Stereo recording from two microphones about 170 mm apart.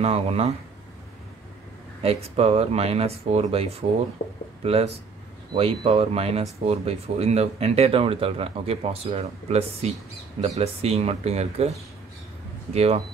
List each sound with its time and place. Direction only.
0.0 s speech: 35° right (ahead or behind)
2.0 s speech: 35° right (ahead or behind)
12.7 s speech: 35° right (ahead or behind)